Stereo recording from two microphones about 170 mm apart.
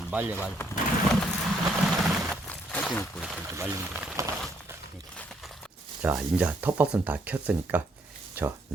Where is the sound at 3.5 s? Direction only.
15° right (ahead or behind).